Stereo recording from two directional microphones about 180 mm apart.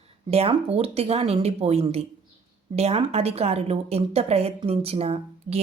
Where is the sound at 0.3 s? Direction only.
35° right (ahead or behind).